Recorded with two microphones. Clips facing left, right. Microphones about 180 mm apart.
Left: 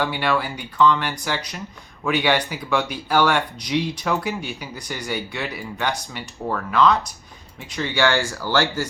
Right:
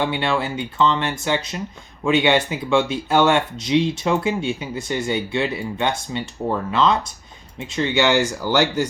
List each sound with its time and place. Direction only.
0.0 s speech: 25° right (ahead or behind)